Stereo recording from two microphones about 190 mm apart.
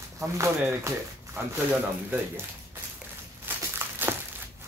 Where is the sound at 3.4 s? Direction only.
10° right (ahead or behind).